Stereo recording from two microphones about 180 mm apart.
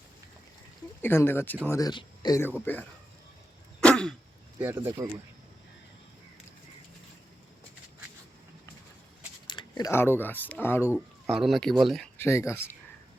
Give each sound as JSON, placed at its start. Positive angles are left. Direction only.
{"t": 1.0, "sound": "speech", "side_deg": 10}
{"t": 3.8, "sound": "throat clearing", "side_deg": 5}
{"t": 4.6, "sound": "speech", "side_deg": -10}
{"t": 9.5, "sound": "speech", "side_deg": 25}
{"t": 10.9, "sound": "speech", "side_deg": 0}
{"t": 12.1, "sound": "speech", "side_deg": 15}